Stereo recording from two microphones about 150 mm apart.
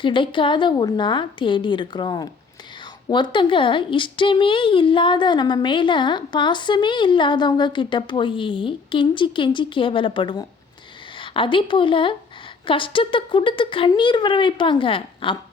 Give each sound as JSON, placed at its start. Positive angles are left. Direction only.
{"t": 0.0, "sound": "a woman's voice", "side_deg": 35}